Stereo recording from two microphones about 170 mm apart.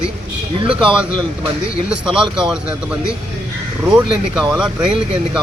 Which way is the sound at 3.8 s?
5° right (ahead or behind).